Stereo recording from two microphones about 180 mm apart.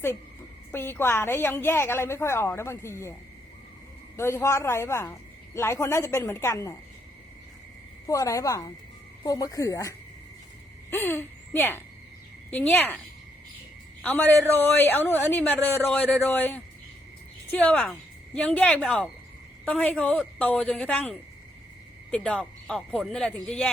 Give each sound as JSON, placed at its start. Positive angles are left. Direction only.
{"t": 0.7, "sound": "a woman's voice", "side_deg": 15}
{"t": 4.2, "sound": "a woman's voice", "side_deg": 15}
{"t": 8.0, "sound": "a woman's voice", "side_deg": 20}
{"t": 10.9, "sound": "a woman's voice", "side_deg": 10}
{"t": 14.0, "sound": "a man's voice", "side_deg": 5}